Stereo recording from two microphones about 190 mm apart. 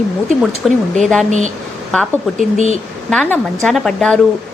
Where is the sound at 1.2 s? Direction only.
40° right (ahead or behind).